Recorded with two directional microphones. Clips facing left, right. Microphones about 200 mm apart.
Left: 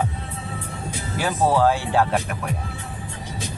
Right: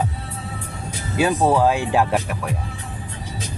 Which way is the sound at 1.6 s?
15° right (ahead or behind).